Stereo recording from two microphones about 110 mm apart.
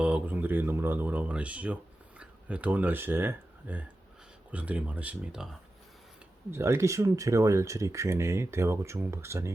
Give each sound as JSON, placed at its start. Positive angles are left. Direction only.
{"t": 0.0, "sound": "speech", "side_deg": -10}
{"t": 6.5, "sound": "speech", "side_deg": -25}